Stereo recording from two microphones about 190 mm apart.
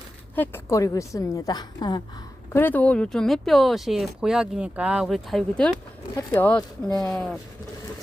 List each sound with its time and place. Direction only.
0.3 s a woman's voice: 10° left (ahead or behind)
2.5 s a woman's voice: 10° left (ahead or behind)